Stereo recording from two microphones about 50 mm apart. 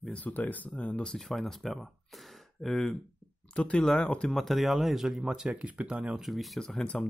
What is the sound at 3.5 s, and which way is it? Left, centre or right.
Speech, left.